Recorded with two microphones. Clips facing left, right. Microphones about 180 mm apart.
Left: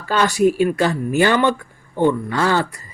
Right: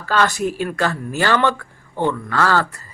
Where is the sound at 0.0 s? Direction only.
15° left (ahead or behind).